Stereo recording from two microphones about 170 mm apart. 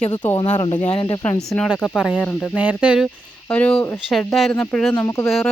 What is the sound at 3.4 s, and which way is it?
A woman's voice, 5° left (ahead or behind).